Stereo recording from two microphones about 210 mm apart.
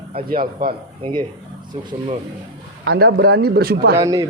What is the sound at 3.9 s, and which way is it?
Speech, 15° right (ahead or behind).